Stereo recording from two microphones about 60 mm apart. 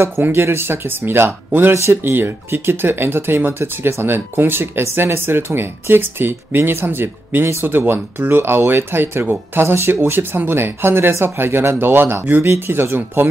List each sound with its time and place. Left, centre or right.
0.0 s speech: right